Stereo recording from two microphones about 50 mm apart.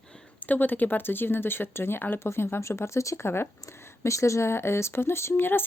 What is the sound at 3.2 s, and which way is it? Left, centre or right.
Speech, left.